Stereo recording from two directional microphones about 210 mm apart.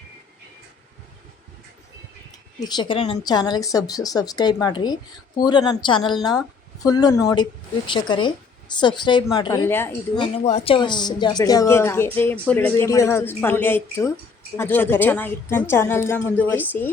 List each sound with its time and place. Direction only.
2.6 s speech: 20° left (ahead or behind)
10.2 s speech: 25° left (ahead or behind); by 16.6 s 10° left (ahead or behind)